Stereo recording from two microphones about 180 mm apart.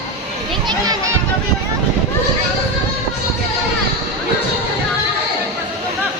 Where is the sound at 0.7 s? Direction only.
20° right (ahead or behind).